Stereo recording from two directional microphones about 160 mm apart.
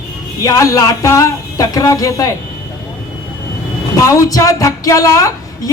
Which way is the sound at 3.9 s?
20° left (ahead or behind).